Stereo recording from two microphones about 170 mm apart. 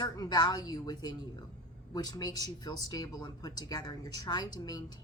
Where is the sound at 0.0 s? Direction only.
25° left (ahead or behind).